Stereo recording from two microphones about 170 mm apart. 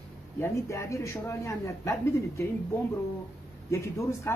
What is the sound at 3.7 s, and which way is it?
Speech, 15° left (ahead or behind).